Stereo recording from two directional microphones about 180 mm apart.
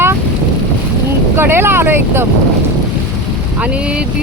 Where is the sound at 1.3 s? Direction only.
10° right (ahead or behind).